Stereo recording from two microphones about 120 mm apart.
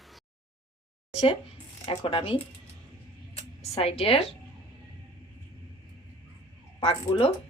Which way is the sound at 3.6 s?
55° left (ahead or behind).